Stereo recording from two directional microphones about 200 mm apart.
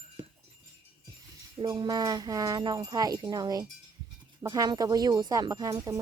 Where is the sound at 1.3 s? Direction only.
20° right (ahead or behind).